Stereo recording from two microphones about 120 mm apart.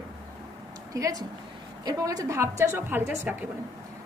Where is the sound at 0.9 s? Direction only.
25° right (ahead or behind).